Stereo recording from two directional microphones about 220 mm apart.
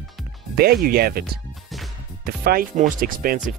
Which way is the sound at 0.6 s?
45° right (ahead or behind).